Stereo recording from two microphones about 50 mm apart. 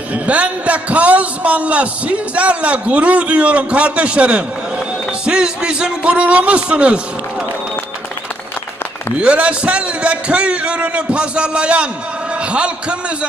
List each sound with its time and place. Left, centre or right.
0.1 s a man's voice: right
9.2 s a man's voice: right